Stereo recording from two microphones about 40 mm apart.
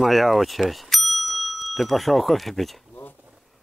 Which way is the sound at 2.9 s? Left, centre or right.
Left.